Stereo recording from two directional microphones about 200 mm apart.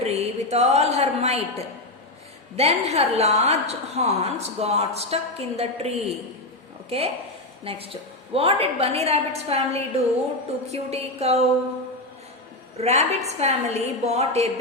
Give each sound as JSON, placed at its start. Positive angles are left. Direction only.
{"t": 0.0, "sound": "a sound", "side_deg": -30}
{"t": 0.5, "sound": "a woman's voice", "side_deg": -30}
{"t": 12.7, "sound": "a woman's voice", "side_deg": -30}